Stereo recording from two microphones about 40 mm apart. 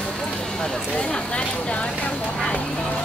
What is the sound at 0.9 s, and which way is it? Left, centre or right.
Speech, left.